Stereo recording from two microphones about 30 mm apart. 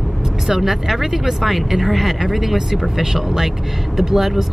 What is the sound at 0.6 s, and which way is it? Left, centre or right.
Speech, centre.